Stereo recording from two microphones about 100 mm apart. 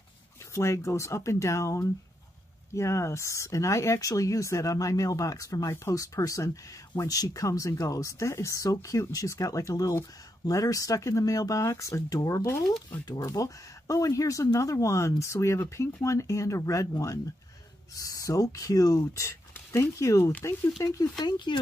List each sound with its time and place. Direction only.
0.5 s speech: 30° left (ahead or behind)
13.0 s speech: 45° left (ahead or behind)